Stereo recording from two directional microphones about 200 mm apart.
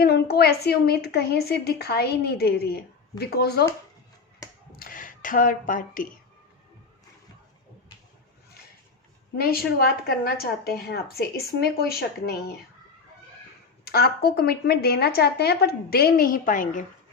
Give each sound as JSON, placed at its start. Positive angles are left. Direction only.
{"t": 0.0, "sound": "a woman's voice", "side_deg": 50}
{"t": 4.8, "sound": "speech", "side_deg": 45}
{"t": 9.3, "sound": "a woman's voice", "side_deg": 50}
{"t": 13.8, "sound": "a woman's voice", "side_deg": 50}